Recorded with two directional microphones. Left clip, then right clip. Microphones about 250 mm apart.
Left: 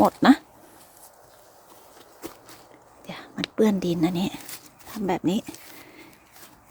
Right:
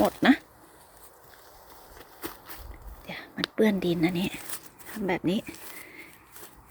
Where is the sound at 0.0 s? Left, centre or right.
Centre.